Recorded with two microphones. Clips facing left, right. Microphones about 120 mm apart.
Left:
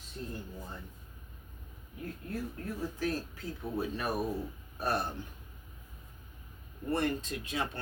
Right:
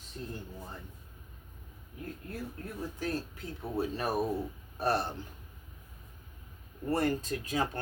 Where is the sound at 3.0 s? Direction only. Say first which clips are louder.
Right 1 dB; 20° right (ahead or behind).